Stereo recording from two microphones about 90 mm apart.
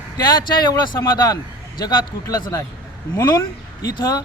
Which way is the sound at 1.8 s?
45° left (ahead or behind).